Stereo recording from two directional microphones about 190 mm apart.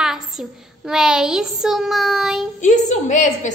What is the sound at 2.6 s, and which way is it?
Speech, 40° left (ahead or behind).